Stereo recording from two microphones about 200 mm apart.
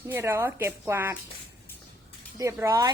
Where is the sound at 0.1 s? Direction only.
15° right (ahead or behind).